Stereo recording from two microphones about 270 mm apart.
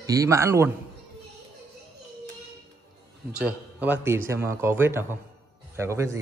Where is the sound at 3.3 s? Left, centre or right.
Centre.